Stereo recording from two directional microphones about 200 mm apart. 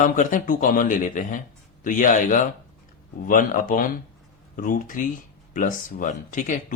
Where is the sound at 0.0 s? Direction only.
40° left (ahead or behind).